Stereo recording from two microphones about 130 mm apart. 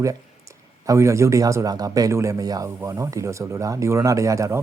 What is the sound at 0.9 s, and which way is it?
A man's voice, 20° right (ahead or behind).